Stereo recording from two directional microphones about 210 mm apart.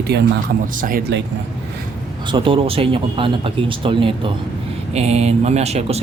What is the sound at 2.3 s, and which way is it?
A man's voice, 25° right (ahead or behind).